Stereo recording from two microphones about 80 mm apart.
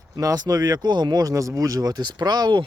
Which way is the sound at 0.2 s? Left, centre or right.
Right.